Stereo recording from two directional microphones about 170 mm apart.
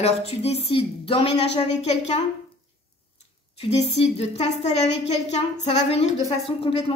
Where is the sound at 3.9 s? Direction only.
40° left (ahead or behind).